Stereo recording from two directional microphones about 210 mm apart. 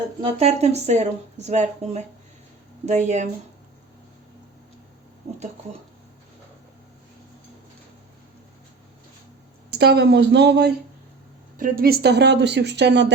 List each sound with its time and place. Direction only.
0.2 s speech: 30° right (ahead or behind)
5.2 s a sound: 30° right (ahead or behind)
9.7 s speech: 50° right (ahead or behind)
11.5 s speech: 40° right (ahead or behind)